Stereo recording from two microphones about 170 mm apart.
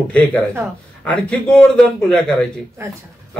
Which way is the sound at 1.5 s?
5° left (ahead or behind).